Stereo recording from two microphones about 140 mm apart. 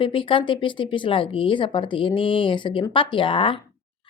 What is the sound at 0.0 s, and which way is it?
A woman's voice, 40° left (ahead or behind).